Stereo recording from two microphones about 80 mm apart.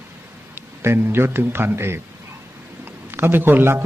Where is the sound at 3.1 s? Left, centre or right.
Right.